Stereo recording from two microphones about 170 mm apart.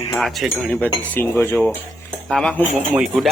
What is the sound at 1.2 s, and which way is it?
Cutlery, 10° left (ahead or behind).